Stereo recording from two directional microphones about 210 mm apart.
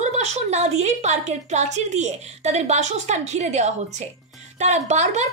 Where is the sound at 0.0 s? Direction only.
30° right (ahead or behind).